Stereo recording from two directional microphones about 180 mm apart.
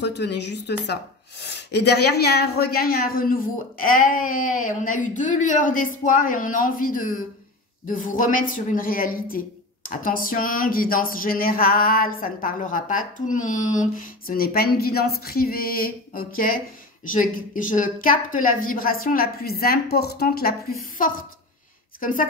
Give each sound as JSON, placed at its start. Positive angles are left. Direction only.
{"t": 0.0, "sound": "speech", "side_deg": 70}